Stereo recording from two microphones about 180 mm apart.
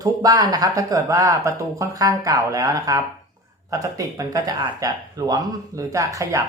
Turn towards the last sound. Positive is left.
turn(degrees=-20)  # may be behind; listen again after turning